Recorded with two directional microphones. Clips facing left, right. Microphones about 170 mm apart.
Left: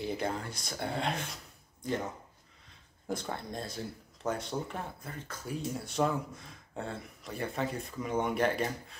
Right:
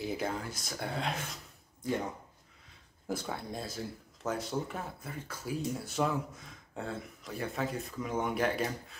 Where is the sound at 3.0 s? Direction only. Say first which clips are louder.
Even; 5° right (ahead or behind).